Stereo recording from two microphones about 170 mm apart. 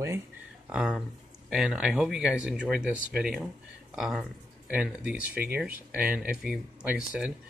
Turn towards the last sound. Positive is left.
turn(degrees=-5)  # may be behind; listen again after turning